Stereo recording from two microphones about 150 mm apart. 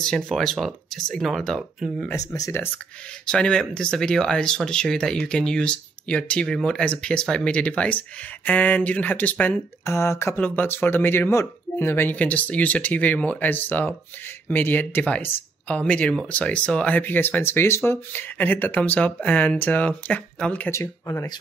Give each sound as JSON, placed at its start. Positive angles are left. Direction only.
{"t": 0.0, "sound": "speech", "side_deg": 5}
{"t": 2.0, "sound": "speech", "side_deg": 20}
{"t": 3.3, "sound": "speech", "side_deg": 5}